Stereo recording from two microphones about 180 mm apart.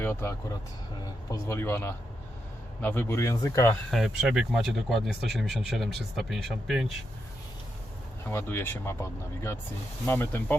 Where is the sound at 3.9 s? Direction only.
Centre (ahead or behind).